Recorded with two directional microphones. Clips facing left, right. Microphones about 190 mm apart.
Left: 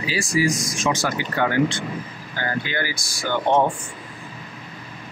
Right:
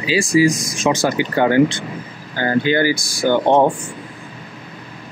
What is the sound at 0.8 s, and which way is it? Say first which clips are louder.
Speech: right 8 dB; 25° right (ahead or behind).